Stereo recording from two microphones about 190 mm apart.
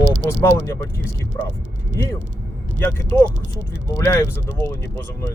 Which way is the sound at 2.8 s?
10° left (ahead or behind).